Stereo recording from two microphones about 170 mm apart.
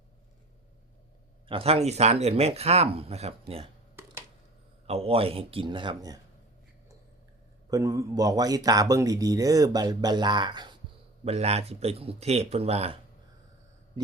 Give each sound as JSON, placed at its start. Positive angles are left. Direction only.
{"t": 1.5, "sound": "speech", "side_deg": -35}
{"t": 4.9, "sound": "speech", "side_deg": -35}
{"t": 7.7, "sound": "speech", "side_deg": -20}
{"t": 11.3, "sound": "speech", "side_deg": -40}
{"t": 14.0, "sound": "speech", "side_deg": -25}